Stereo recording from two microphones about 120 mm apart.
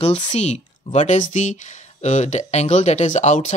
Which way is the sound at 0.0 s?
60° left (ahead or behind).